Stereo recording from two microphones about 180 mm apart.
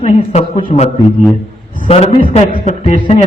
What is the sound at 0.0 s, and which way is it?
Speech, 35° left (ahead or behind).